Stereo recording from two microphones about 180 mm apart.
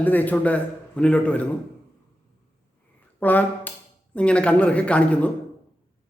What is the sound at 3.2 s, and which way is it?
Speech, 10° left (ahead or behind).